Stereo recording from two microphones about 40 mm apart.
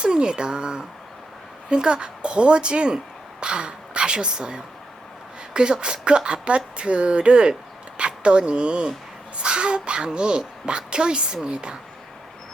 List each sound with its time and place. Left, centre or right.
0.0 s a child's voice: right